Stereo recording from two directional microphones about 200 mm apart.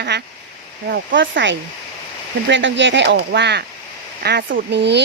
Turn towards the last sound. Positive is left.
turn(degrees=-60)  # may be behind; listen again after turning